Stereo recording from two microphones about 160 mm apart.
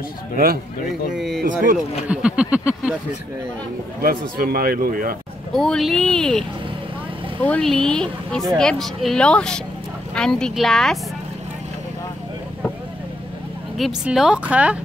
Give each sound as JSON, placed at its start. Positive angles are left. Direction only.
{"t": 1.1, "sound": "speech", "side_deg": 0}
{"t": 1.4, "sound": "a man's voice", "side_deg": -60}
{"t": 2.0, "sound": "a sound", "side_deg": -5}
{"t": 4.0, "sound": "a man's voice", "side_deg": -65}
{"t": 5.5, "sound": "speech", "side_deg": 5}
{"t": 7.4, "sound": "speech", "side_deg": 5}
{"t": 13.7, "sound": "speech", "side_deg": 0}